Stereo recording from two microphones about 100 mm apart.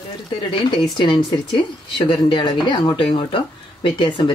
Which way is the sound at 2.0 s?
50° left (ahead or behind).